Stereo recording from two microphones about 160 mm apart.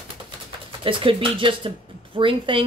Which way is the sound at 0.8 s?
35° right (ahead or behind).